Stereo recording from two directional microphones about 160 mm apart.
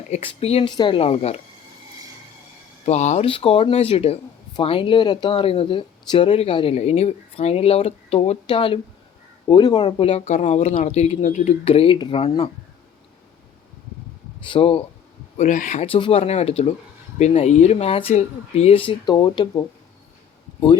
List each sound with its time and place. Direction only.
0.1 s speech: 35° left (ahead or behind)
2.8 s speech: 45° left (ahead or behind)
14.4 s speech: 35° left (ahead or behind)
15.4 s speech: 55° left (ahead or behind); by 19.6 s 30° left (ahead or behind)